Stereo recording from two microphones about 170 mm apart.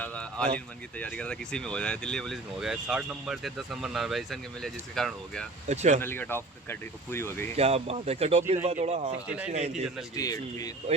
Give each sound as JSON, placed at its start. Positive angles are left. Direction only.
{"t": 0.0, "sound": "speech", "side_deg": 5}
{"t": 5.6, "sound": "speech", "side_deg": -40}
{"t": 6.0, "sound": "speech", "side_deg": 10}
{"t": 7.5, "sound": "speech", "side_deg": -35}
{"t": 9.1, "sound": "a man's voice", "side_deg": -5}
{"t": 9.5, "sound": "speech", "side_deg": -40}
{"t": 10.2, "sound": "speech", "side_deg": 20}